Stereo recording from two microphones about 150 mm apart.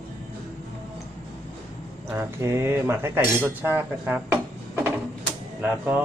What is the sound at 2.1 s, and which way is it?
Speech, 15° right (ahead or behind).